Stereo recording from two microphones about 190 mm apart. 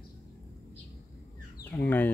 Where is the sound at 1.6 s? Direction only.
10° left (ahead or behind).